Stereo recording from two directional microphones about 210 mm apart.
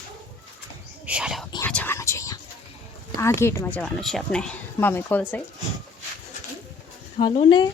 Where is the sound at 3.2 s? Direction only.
10° left (ahead or behind).